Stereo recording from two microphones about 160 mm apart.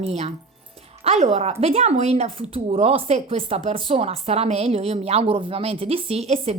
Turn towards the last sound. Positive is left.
turn(degrees=-40)  # may be behind; listen again after turning